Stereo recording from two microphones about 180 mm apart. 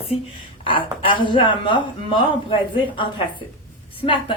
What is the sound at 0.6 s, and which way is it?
A woman's voice, 30° left (ahead or behind).